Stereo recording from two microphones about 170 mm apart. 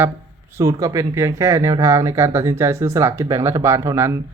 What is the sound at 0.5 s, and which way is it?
Speech, 15° right (ahead or behind).